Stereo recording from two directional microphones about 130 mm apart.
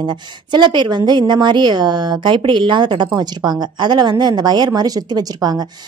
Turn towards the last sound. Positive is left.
turn(degrees=-30)  # may be behind; listen again after turning